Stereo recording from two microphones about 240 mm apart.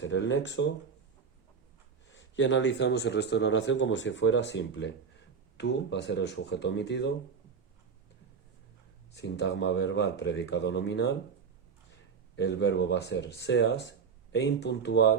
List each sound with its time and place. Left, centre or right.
0.0 s speech: left
2.1 s speech: left
9.1 s speech: left
12.4 s speech: left